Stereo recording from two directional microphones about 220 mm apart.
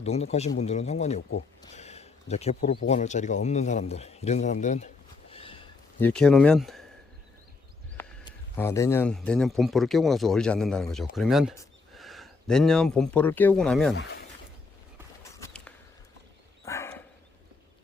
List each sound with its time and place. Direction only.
0.0 s speech: 30° left (ahead or behind)
5.3 s a sound: 25° left (ahead or behind)
6.0 s a man's voice: 5° left (ahead or behind)
8.2 s a man's voice: 10° left (ahead or behind)
13.9 s speech: 50° left (ahead or behind)
15.2 s a sound: 10° left (ahead or behind)
16.6 s dog: 10° left (ahead or behind)